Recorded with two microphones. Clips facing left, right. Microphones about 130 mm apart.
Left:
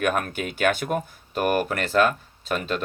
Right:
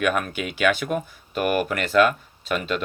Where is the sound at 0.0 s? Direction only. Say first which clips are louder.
Right 1 dB; 45° left (ahead or behind).